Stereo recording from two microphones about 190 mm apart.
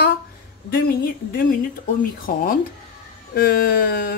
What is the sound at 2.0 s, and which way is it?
Speech, 50° left (ahead or behind).